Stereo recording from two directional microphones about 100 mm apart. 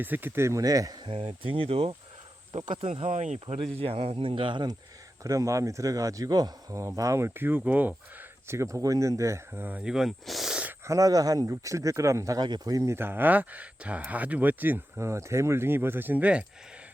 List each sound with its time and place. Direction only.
0.0 s speech: 20° right (ahead or behind); by 0.9 s 35° right (ahead or behind)
1.0 s speech: 65° right (ahead or behind)
2.5 s speech: 55° right (ahead or behind)
5.2 s speech: 35° right (ahead or behind); by 7.9 s 15° right (ahead or behind)
8.4 s speech: 30° right (ahead or behind)
9.5 s speech: 15° right (ahead or behind)
9.8 s speech: 5° right (ahead or behind)
10.8 s speech: 35° right (ahead or behind); by 15.0 s 20° right (ahead or behind)
15.0 s speech: 30° right (ahead or behind); by 16.5 s 15° right (ahead or behind)